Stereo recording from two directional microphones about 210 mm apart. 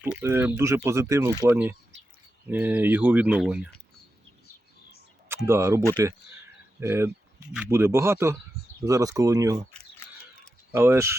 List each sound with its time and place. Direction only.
0.0 s speech: 10° right (ahead or behind)
5.3 s speech: 10° right (ahead or behind)
10.7 s speech: 10° right (ahead or behind)